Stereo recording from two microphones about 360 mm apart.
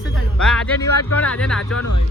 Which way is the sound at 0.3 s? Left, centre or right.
Centre.